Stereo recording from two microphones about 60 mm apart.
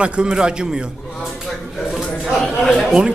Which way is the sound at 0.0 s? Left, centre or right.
Centre.